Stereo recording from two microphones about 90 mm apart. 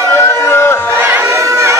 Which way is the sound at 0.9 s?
20° right (ahead or behind).